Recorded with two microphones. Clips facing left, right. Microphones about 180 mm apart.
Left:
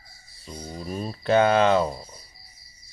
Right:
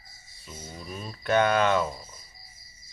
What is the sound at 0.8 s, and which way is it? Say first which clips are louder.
Speech: left 8 dB; 40° left (ahead or behind).